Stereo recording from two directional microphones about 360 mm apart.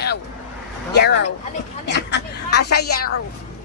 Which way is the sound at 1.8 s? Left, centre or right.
Left.